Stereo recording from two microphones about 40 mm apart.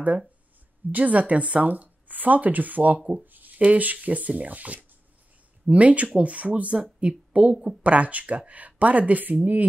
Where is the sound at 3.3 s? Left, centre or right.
Right.